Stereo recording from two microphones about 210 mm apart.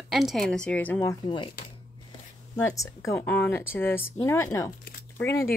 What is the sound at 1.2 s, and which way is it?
Speech, 20° left (ahead or behind).